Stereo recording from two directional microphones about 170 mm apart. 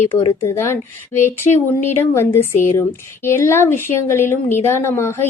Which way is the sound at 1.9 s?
15° left (ahead or behind).